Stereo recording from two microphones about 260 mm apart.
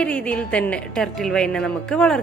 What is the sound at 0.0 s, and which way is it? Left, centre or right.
A woman's voice, centre.